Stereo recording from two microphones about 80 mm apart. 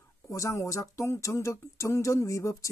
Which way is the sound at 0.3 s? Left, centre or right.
Left.